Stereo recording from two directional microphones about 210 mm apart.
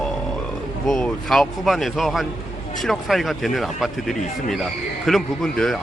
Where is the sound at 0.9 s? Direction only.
Centre (ahead or behind).